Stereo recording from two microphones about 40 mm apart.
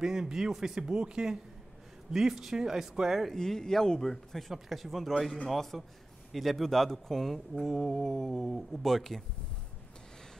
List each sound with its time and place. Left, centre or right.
0.0 s speech: centre
3.3 s speech: centre